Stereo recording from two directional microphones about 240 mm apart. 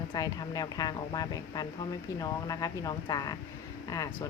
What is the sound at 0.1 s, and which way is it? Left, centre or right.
Speech, centre.